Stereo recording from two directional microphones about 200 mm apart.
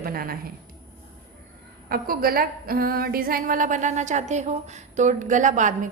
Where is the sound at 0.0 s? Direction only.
45° right (ahead or behind).